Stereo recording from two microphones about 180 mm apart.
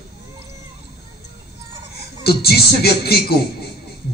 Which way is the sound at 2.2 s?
60° left (ahead or behind).